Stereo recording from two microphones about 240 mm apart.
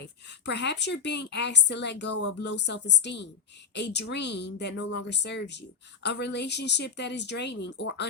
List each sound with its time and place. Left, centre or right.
0.0 s speech: left